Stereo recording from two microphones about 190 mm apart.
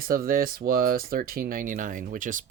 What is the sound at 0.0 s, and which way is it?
Speech, 50° right (ahead or behind).